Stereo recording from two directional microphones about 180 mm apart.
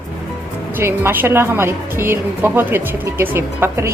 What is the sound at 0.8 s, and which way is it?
A woman's voice, 10° right (ahead or behind).